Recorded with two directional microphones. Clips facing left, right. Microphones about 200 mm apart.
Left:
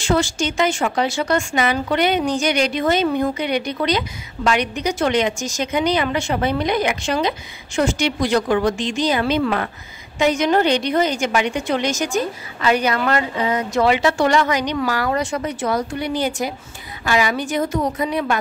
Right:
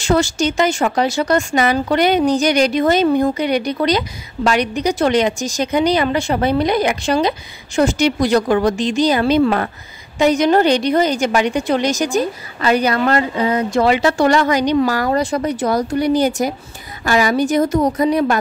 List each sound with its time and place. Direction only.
0.0 s a woman's voice: 40° right (ahead or behind)